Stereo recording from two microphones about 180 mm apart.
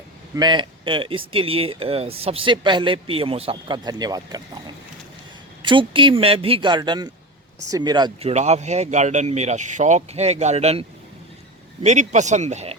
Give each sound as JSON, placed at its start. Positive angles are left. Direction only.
{"t": 0.3, "sound": "speech", "side_deg": -25}
{"t": 8.3, "sound": "speech", "side_deg": -40}